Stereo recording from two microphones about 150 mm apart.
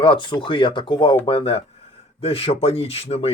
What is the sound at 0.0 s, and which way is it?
Speech, 35° left (ahead or behind).